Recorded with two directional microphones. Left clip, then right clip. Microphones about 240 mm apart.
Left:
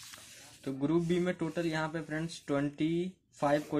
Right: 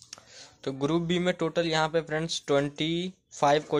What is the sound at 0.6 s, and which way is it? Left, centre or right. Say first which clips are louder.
A man's voice: right 4 dB; centre.